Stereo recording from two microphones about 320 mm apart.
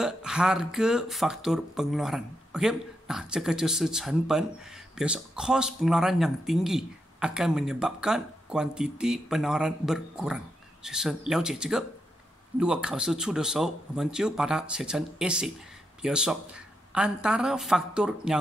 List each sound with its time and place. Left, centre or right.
0.0 s speech: centre